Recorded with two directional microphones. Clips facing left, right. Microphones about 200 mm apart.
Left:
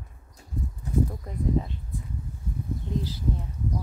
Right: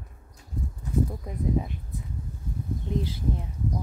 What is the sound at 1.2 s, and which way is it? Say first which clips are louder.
Speech: even; 15° right (ahead or behind).